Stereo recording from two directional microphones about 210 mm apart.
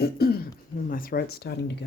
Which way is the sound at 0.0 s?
45° left (ahead or behind).